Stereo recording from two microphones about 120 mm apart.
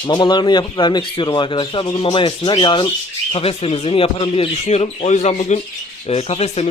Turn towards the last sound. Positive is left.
turn(degrees=60)  # may be behind; listen again after turning